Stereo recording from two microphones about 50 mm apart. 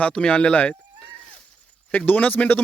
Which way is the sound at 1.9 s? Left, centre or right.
Left.